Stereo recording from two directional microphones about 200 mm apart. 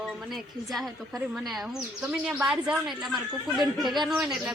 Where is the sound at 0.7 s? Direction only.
Centre (ahead or behind).